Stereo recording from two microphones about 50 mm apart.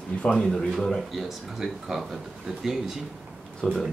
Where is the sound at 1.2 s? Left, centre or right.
Centre.